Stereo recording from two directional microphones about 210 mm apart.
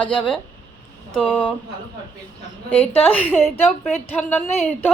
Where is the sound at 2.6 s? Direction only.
5° left (ahead or behind).